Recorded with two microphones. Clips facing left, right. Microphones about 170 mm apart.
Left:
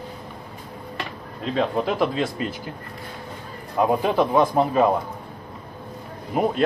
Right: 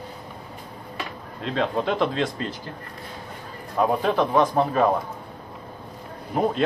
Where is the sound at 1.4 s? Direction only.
5° left (ahead or behind).